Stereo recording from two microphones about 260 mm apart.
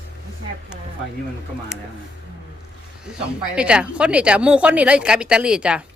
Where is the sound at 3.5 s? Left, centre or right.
Centre.